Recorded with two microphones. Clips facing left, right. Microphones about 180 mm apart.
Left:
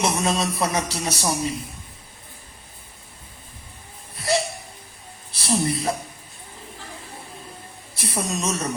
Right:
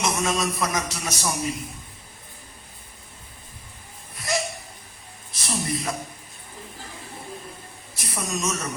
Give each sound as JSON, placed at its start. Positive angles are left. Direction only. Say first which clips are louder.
{"t": 0.0, "sound": "a man's voice", "louder": "left 2 dB", "side_deg": 30}
{"t": 4.1, "sound": "a sound", "louder": "left 4 dB", "side_deg": 30}
{"t": 5.3, "sound": "a woman's voice", "louder": "left 5 dB", "side_deg": 30}
{"t": 7.9, "sound": "a man's voice", "louder": "left 3 dB", "side_deg": 30}